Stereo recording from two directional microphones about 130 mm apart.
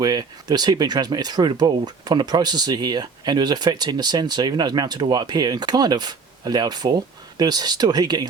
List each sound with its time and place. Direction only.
0.0 s speech: 30° right (ahead or behind)